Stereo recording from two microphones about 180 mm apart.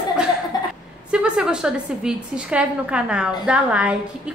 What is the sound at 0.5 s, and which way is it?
Chuckle, 20° left (ahead or behind).